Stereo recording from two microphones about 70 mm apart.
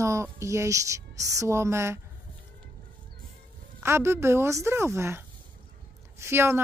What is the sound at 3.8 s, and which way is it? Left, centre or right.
Speech, right.